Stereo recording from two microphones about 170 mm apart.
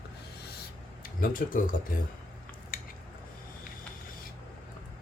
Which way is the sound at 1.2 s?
55° left (ahead or behind).